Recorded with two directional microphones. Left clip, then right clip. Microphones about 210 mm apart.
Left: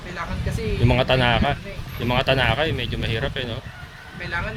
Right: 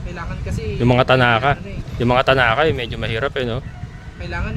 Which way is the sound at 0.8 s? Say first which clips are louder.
Right 5 dB; 50° right (ahead or behind).